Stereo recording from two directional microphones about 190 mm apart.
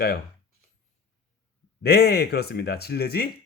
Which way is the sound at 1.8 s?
55° left (ahead or behind).